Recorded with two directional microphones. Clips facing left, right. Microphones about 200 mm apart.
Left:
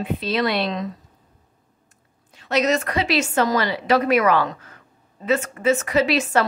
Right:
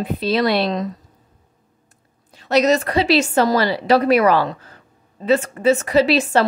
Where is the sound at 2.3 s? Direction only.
35° right (ahead or behind).